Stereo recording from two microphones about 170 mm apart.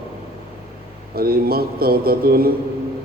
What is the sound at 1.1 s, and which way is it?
A man's voice, 60° right (ahead or behind).